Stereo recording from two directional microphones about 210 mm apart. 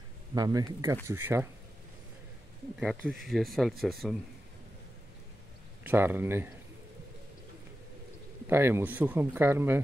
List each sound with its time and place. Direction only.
0.3 s speech: 15° right (ahead or behind)
2.8 s speech: 5° right (ahead or behind)
5.9 s speech: 10° right (ahead or behind)
8.5 s speech: 10° right (ahead or behind)